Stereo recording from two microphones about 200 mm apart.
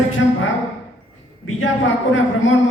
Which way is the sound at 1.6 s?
75° left (ahead or behind).